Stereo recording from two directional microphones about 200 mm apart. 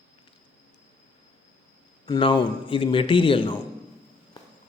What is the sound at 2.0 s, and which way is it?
A man's voice, 25° left (ahead or behind).